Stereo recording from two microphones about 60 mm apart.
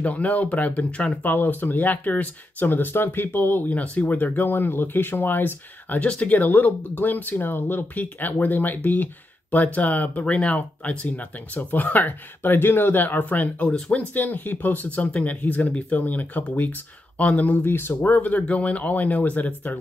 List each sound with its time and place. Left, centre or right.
0.0 s speech: left
13.7 s speech: centre
14.1 s speech: left
17.6 s speech: left